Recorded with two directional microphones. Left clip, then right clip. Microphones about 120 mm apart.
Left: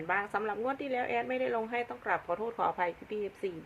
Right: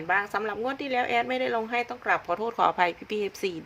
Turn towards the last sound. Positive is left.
turn(degrees=-55)  # may be behind; listen again after turning